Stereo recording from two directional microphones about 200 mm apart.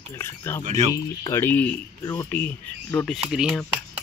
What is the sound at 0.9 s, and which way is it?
Speech, 15° left (ahead or behind).